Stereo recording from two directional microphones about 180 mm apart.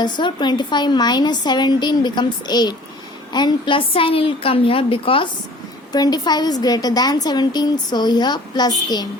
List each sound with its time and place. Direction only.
0.0 s a woman's voice: 25° left (ahead or behind)